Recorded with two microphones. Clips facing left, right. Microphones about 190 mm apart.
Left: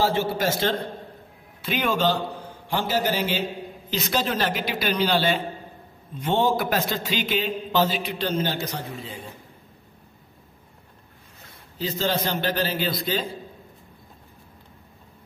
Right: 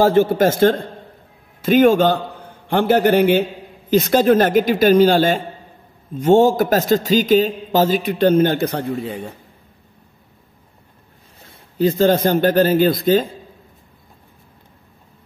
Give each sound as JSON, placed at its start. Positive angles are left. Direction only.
{"t": 0.0, "sound": "a man's voice", "side_deg": -50}
{"t": 2.7, "sound": "a man's voice", "side_deg": -60}
{"t": 11.8, "sound": "a man's voice", "side_deg": -50}